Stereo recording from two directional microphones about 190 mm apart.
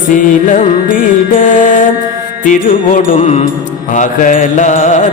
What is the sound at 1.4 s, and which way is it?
Music, 45° left (ahead or behind).